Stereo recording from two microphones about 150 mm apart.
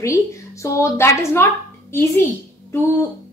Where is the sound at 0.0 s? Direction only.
20° left (ahead or behind).